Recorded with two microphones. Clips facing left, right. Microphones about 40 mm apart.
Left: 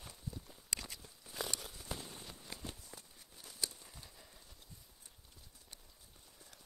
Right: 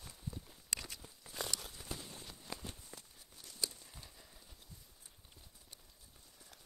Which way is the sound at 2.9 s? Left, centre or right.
Centre.